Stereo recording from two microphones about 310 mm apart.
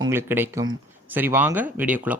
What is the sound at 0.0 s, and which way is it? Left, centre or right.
A man's voice, centre.